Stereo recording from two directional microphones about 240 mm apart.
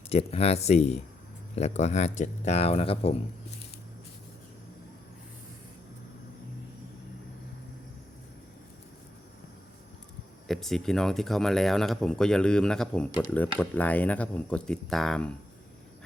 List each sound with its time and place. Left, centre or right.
0.1 s speech: left
10.5 s speech: centre